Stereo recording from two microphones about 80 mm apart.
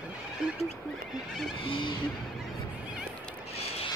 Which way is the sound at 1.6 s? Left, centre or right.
Left.